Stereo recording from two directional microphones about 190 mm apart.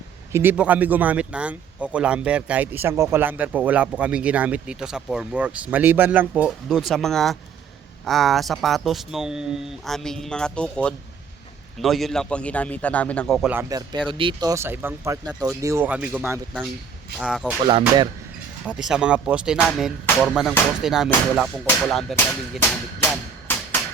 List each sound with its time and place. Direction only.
0.3 s speech: 10° right (ahead or behind)
13.5 s speech: 15° right (ahead or behind)
17.7 s speech: 25° right (ahead or behind)
18.6 s speech: 5° right (ahead or behind)
23.0 s a sound: 10° left (ahead or behind)